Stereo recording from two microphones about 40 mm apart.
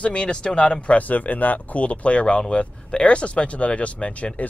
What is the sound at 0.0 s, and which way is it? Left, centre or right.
Speech, left.